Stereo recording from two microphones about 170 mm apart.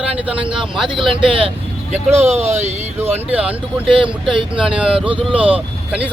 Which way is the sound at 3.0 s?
10° right (ahead or behind).